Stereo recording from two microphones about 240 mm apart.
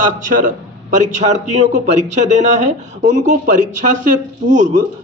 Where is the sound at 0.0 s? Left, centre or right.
Right.